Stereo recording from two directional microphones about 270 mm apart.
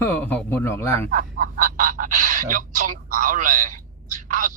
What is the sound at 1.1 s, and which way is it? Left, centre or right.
Speech, right.